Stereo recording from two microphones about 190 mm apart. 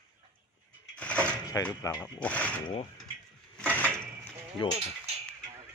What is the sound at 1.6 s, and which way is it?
Speech, 15° left (ahead or behind).